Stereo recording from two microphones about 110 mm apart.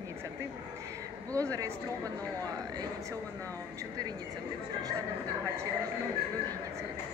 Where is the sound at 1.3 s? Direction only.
30° right (ahead or behind).